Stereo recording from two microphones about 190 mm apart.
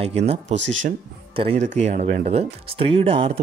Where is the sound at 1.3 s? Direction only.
35° right (ahead or behind).